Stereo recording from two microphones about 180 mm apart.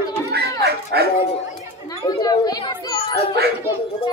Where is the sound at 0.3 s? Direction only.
60° right (ahead or behind).